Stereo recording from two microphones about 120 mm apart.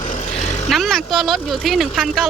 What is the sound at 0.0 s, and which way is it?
Vehicle, 85° left.